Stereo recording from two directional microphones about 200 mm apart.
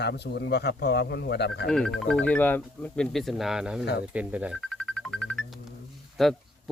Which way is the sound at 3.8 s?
55° left (ahead or behind).